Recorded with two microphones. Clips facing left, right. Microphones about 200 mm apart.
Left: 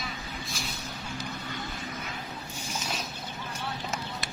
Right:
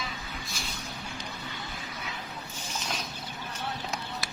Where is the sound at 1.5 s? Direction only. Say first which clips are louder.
Left 3 dB; 50° left (ahead or behind).